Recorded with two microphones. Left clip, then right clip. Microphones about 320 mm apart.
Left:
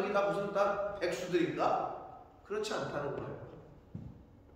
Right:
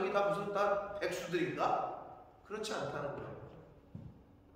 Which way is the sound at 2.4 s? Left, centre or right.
Centre.